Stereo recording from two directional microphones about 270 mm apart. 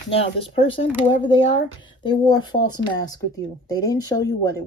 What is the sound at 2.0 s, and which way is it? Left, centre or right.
Speech, centre.